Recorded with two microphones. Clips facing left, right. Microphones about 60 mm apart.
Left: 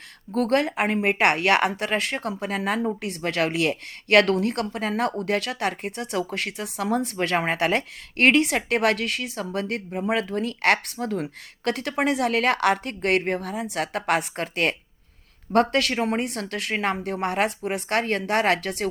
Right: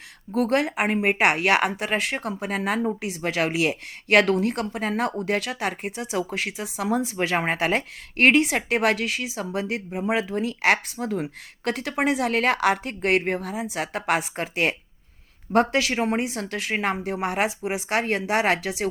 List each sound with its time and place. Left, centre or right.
0.3 s a woman's voice: centre